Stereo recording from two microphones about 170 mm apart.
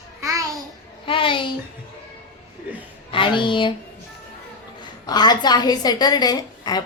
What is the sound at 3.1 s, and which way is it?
Speech, 30° left (ahead or behind).